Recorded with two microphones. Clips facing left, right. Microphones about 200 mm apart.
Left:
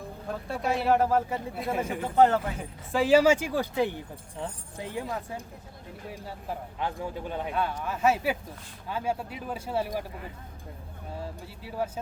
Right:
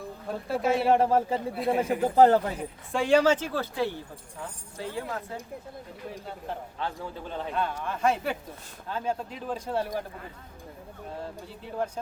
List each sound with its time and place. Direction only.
0.4 s speech: centre (ahead or behind)
0.9 s speech: 30° right (ahead or behind)
1.5 s speech: centre (ahead or behind)
2.0 s speech: 35° right (ahead or behind)
2.6 s speech: centre (ahead or behind)
6.7 s speech: 15° left (ahead or behind)
11.8 s speech: 5° left (ahead or behind)